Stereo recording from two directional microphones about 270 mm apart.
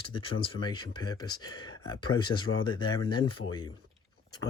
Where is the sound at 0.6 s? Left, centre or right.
Centre.